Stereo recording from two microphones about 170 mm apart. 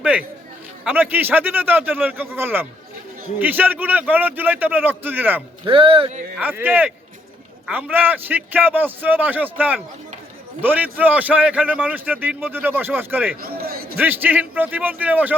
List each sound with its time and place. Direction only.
0.9 s a man's voice: 10° right (ahead or behind)
5.6 s speech: 30° right (ahead or behind)
6.4 s a man's voice: 10° right (ahead or behind)
13.4 s a man's voice: 60° right (ahead or behind)
13.9 s a man's voice: 10° right (ahead or behind)